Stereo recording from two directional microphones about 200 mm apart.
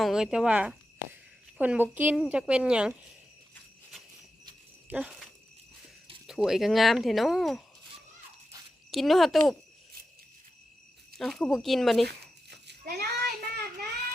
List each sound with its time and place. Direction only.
0.0 s speech: centre (ahead or behind)
4.9 s speech: 5° right (ahead or behind)
8.9 s speech: centre (ahead or behind)
11.2 s speech: centre (ahead or behind)
12.0 s a sound: 55° right (ahead or behind)